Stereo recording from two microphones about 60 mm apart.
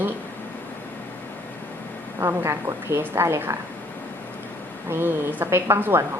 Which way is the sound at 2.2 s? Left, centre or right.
Right.